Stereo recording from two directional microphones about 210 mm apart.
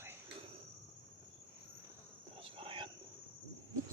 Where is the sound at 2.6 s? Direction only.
25° right (ahead or behind).